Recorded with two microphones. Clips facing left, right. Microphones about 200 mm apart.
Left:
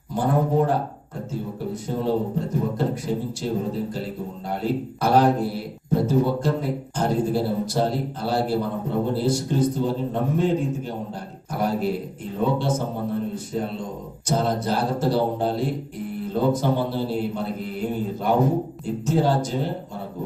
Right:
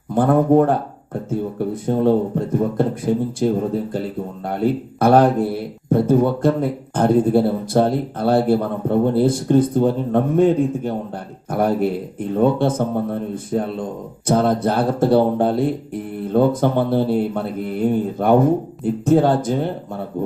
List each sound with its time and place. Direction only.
0.1 s a man's voice: 55° right (ahead or behind)
4.4 s a man's voice: 55° right (ahead or behind)